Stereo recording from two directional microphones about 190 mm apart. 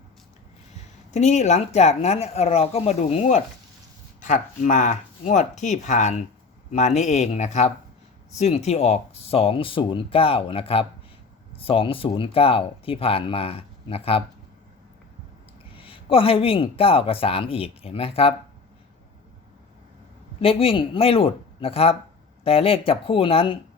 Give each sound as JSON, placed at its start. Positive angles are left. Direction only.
{"t": 1.1, "sound": "speech", "side_deg": 35}
{"t": 15.7, "sound": "speech", "side_deg": 30}
{"t": 20.4, "sound": "speech", "side_deg": 30}